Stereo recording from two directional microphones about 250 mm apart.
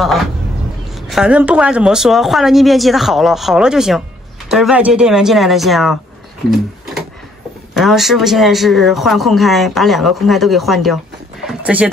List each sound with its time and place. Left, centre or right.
0.9 s speech: centre
6.5 s a sound: centre
7.7 s speech: centre